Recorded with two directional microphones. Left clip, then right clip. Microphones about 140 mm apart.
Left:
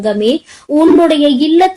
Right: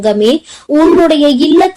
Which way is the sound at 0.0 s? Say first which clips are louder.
Right 3 dB; 40° right (ahead or behind).